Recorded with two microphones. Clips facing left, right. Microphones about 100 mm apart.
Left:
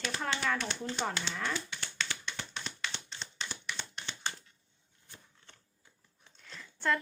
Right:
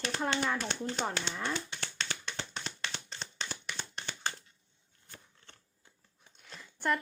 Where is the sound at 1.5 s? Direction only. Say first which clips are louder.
Right 1 dB; 35° right (ahead or behind).